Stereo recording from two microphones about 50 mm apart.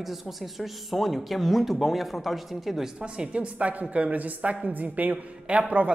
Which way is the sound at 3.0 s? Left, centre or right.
Centre.